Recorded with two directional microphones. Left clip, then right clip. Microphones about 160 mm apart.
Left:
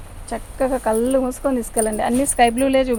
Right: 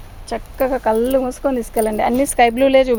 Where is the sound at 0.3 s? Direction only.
60° right (ahead or behind).